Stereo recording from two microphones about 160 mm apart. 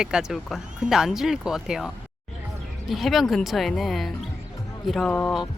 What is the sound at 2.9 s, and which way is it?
Speech, centre (ahead or behind).